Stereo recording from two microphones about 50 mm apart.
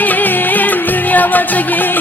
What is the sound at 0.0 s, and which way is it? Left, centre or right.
Music, left.